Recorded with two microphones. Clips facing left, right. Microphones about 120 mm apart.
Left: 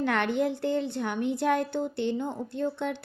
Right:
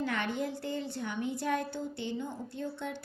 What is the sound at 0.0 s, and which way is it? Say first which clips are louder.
A woman's voice: left 7 dB; 65° left (ahead or behind).